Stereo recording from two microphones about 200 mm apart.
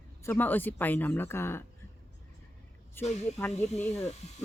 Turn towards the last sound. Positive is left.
turn(degrees=35)  # may be behind; listen again after turning